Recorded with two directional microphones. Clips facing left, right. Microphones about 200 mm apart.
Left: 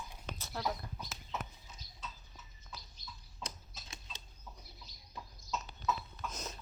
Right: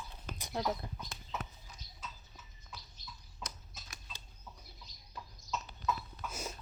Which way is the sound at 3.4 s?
25° left (ahead or behind).